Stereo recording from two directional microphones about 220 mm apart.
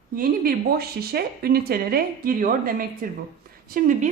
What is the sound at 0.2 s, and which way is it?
A woman's voice, 45° right (ahead or behind).